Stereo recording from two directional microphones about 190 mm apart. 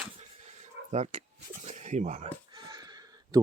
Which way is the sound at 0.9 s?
35° right (ahead or behind).